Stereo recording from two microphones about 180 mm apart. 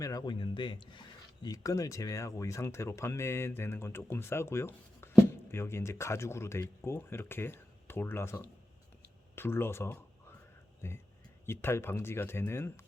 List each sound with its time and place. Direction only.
0.0 s speech: 20° left (ahead or behind)